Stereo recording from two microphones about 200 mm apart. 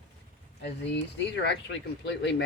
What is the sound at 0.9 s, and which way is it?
Speech, 60° left (ahead or behind).